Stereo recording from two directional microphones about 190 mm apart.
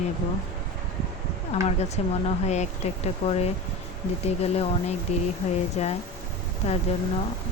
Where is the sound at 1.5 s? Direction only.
35° left (ahead or behind).